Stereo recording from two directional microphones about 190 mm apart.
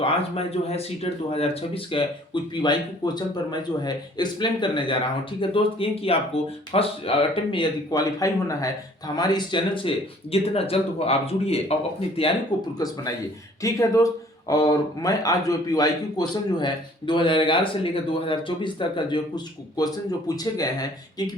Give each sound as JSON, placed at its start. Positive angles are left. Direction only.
{"t": 0.0, "sound": "speech", "side_deg": 30}